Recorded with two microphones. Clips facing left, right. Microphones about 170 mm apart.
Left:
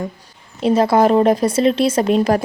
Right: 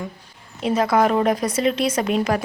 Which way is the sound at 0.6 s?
30° left (ahead or behind).